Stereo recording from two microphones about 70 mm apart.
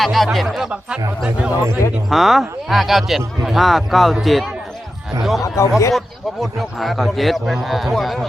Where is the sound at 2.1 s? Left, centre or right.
Centre.